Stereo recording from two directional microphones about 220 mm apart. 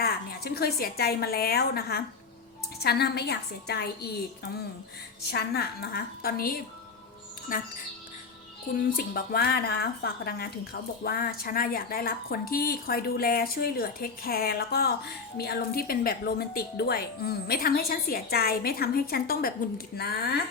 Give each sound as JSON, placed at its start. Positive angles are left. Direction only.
{"t": 0.0, "sound": "a woman's voice", "side_deg": 45}
{"t": 9.0, "sound": "a woman's voice", "side_deg": 45}